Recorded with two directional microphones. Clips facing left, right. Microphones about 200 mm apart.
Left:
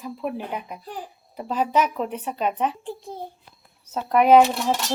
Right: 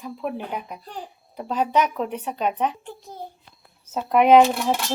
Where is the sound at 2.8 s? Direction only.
30° left (ahead or behind).